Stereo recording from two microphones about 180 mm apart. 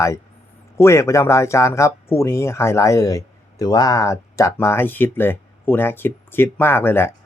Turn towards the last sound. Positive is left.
turn(degrees=10)  # may be behind; listen again after turning